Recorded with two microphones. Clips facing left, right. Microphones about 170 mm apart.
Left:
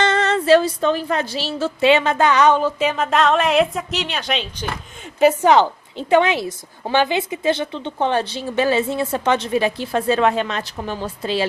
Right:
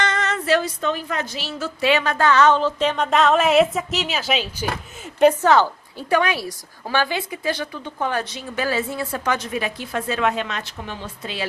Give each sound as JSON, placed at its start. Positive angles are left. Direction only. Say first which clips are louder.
{"t": 0.0, "sound": "a woman's voice", "louder": "left 6 dB", "side_deg": 30}
{"t": 5.2, "sound": "a woman's voice", "louder": "left 1 dB", "side_deg": 10}